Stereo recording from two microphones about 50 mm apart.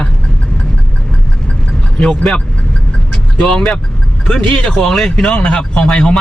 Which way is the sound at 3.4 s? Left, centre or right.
Centre.